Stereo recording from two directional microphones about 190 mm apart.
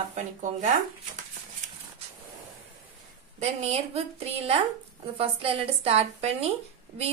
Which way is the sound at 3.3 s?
35° right (ahead or behind).